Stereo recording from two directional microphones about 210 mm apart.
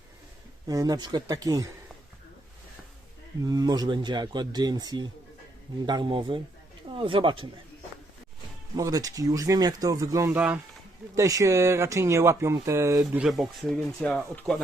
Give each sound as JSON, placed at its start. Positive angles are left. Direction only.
{"t": 0.7, "sound": "speech", "side_deg": -15}
{"t": 3.4, "sound": "a man's voice", "side_deg": -20}
{"t": 8.7, "sound": "speech", "side_deg": -15}
{"t": 13.2, "sound": "speech", "side_deg": 0}